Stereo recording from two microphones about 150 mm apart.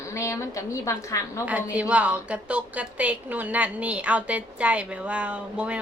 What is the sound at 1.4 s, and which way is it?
A woman's voice, 10° right (ahead or behind).